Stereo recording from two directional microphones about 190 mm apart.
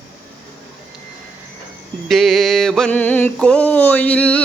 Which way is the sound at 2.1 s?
Centre (ahead or behind).